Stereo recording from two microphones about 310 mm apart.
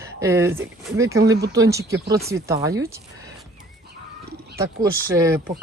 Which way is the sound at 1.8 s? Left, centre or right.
Right.